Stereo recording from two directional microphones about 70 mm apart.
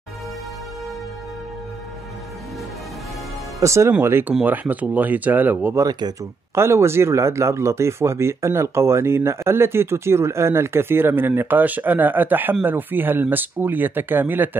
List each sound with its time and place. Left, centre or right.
3.5 s speech: right
4.0 s speech: right
4.3 s speech: centre
5.9 s speech: right
6.5 s speech: right